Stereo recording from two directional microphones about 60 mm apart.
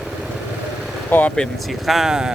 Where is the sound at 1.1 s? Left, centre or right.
Left.